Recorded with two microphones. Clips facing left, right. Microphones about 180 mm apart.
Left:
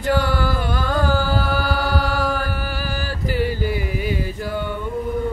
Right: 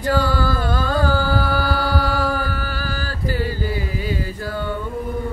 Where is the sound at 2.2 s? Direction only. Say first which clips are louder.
Even; 15° left (ahead or behind).